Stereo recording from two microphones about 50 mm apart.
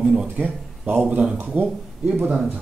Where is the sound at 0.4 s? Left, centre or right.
Right.